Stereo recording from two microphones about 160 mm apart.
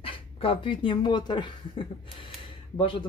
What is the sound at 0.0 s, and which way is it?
Speech, 35° left (ahead or behind).